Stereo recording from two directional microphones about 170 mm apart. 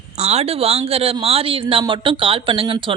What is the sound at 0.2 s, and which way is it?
Speech, 40° right (ahead or behind).